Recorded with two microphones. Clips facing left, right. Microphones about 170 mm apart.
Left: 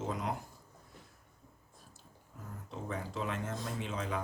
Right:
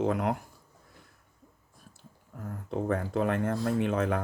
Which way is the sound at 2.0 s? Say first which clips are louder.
Right 9 dB; 60° right (ahead or behind).